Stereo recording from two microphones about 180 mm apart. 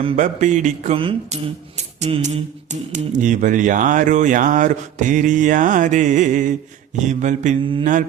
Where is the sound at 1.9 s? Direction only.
40° right (ahead or behind).